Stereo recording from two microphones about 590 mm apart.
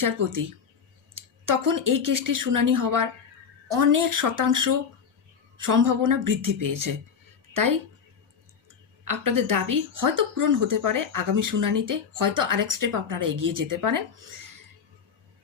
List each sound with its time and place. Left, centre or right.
0.0 s speech: right
1.5 s speech: right
9.0 s speech: right